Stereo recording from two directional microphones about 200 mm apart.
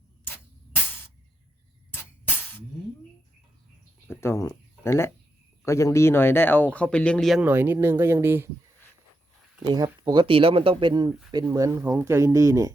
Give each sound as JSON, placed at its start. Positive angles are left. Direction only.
{"t": 1.9, "sound": "music", "side_deg": 10}
{"t": 4.1, "sound": "speech", "side_deg": 10}
{"t": 9.6, "sound": "speech", "side_deg": -20}